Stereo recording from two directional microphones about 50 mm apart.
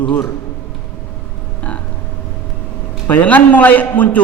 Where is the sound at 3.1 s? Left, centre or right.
Left.